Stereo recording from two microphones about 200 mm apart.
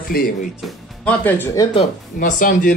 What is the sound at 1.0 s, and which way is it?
Speech, 10° left (ahead or behind).